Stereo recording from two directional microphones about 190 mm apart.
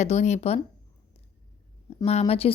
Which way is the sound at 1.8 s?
35° left (ahead or behind).